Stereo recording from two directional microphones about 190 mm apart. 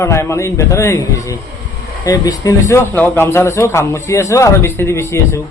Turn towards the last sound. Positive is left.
turn(degrees=15)  # may be behind; listen again after turning